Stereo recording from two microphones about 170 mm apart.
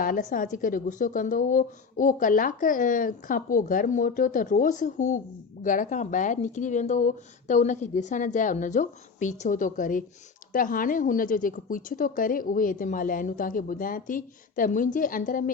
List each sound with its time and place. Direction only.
0.0 s a woman's voice: 50° left (ahead or behind)